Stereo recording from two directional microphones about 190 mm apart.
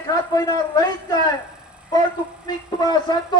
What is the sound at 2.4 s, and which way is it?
Speech, 20° left (ahead or behind).